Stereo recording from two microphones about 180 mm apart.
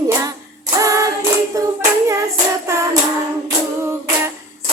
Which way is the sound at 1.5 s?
15° right (ahead or behind).